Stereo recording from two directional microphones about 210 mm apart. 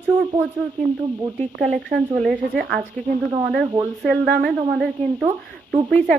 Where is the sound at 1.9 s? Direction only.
50° right (ahead or behind).